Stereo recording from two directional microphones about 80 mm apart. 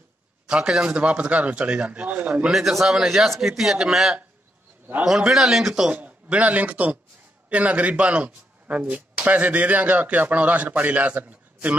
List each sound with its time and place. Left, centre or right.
0.5 s speech: centre
2.5 s a man's voice: centre
5.9 s a man's voice: centre